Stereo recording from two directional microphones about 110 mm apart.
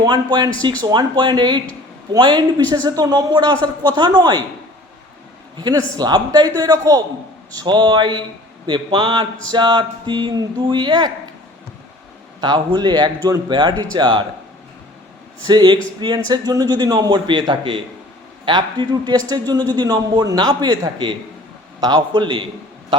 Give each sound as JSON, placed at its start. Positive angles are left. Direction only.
{"t": 0.0, "sound": "a man's voice", "side_deg": -40}
{"t": 5.5, "sound": "a man's voice", "side_deg": -40}
{"t": 12.4, "sound": "a man's voice", "side_deg": -40}
{"t": 15.4, "sound": "a man's voice", "side_deg": -45}